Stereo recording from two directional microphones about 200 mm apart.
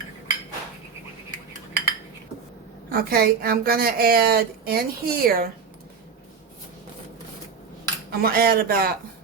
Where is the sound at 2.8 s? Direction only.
50° right (ahead or behind).